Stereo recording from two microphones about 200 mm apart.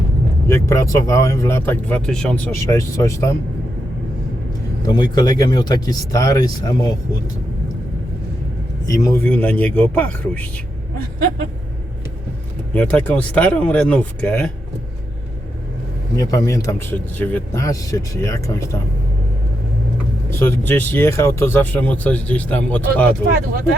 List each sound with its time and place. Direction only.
0.4 s speech: 15° left (ahead or behind)
4.9 s speech: 20° left (ahead or behind)
8.9 s speech: 15° left (ahead or behind)
12.7 s speech: 5° left (ahead or behind)
16.2 s speech: 15° left (ahead or behind)
20.4 s speech: 10° left (ahead or behind)